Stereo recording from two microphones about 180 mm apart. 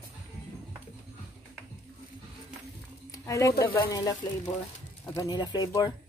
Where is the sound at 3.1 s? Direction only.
15° left (ahead or behind).